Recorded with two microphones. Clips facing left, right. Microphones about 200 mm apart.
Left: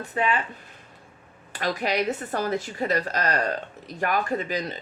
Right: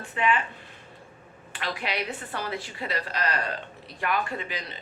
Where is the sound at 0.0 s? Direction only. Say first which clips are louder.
Left 1 dB; 40° left (ahead or behind).